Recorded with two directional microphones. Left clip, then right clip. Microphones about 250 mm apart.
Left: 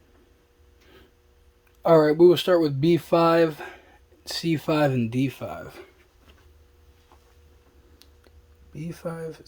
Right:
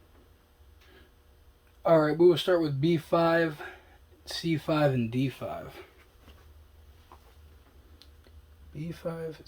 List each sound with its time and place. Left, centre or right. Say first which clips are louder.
1.8 s speech: left 5 dB; left
8.7 s speech: left 3 dB; left